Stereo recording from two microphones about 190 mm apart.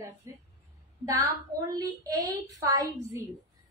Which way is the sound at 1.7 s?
20° right (ahead or behind).